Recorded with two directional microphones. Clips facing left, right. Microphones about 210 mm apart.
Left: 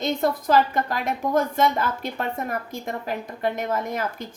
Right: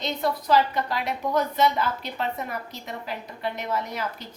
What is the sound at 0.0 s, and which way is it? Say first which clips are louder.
A woman's voice: left 4 dB; 50° left (ahead or behind).